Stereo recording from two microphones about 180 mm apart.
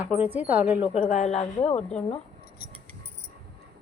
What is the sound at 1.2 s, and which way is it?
Speech, 35° left (ahead or behind).